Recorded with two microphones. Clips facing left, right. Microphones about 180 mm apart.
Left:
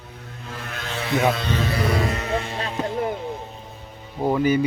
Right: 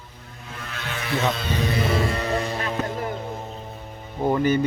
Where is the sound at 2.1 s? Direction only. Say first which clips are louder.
Right 1 dB; 35° right (ahead or behind).